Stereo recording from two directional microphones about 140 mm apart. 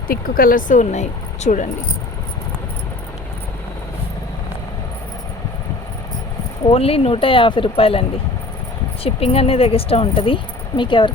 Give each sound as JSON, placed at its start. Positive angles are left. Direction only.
{"t": 0.1, "sound": "speech", "side_deg": 90}
{"t": 6.7, "sound": "speech", "side_deg": 45}
{"t": 9.0, "sound": "speech", "side_deg": 45}